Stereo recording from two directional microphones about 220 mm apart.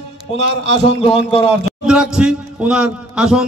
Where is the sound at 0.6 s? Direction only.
30° left (ahead or behind).